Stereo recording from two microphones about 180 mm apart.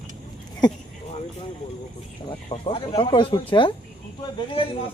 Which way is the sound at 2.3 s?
30° left (ahead or behind).